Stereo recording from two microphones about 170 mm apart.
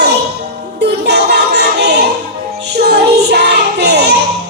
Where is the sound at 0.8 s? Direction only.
80° right.